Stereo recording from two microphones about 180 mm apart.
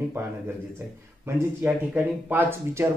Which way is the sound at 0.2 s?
15° right (ahead or behind).